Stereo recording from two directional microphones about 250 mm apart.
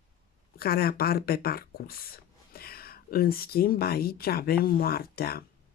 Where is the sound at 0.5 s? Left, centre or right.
Left.